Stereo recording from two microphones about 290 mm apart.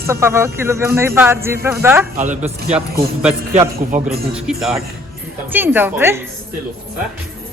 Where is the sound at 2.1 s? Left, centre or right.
Right.